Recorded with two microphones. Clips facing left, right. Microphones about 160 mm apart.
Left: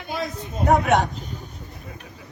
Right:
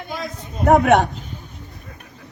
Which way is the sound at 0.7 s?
55° right (ahead or behind).